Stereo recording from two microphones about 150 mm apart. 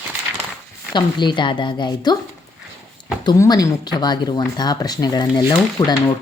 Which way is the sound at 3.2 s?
25° left (ahead or behind).